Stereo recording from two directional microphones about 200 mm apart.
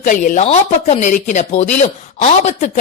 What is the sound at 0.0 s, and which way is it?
Speech, 40° left (ahead or behind).